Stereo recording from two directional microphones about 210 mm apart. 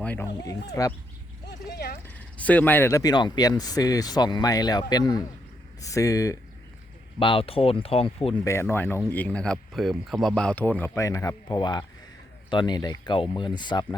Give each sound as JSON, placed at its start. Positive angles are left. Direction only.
{"t": 0.0, "sound": "speech", "side_deg": 10}
{"t": 1.5, "sound": "a sound", "side_deg": 50}
{"t": 2.0, "sound": "speech", "side_deg": 5}
{"t": 8.4, "sound": "speech", "side_deg": 10}